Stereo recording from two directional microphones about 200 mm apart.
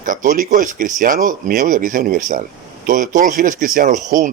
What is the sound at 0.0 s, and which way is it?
Speech, 40° right (ahead or behind).